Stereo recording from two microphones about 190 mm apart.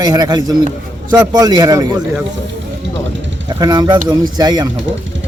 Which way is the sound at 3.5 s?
20° right (ahead or behind).